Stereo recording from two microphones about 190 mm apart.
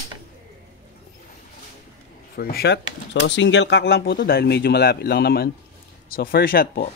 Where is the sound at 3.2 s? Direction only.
70° left (ahead or behind); by 6.8 s 55° left (ahead or behind).